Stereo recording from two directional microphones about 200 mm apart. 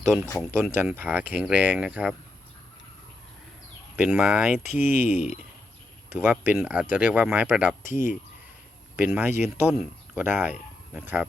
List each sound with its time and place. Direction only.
0.3 s speech: 5° right (ahead or behind)
3.9 s speech: 5° right (ahead or behind)
4.9 s speech: 40° left (ahead or behind)
6.1 s speech: 5° right (ahead or behind)
7.9 s speech: 40° left (ahead or behind)
9.0 s speech: 5° right (ahead or behind)